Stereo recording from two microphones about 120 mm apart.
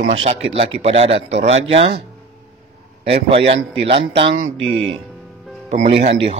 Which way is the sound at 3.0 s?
55° right (ahead or behind).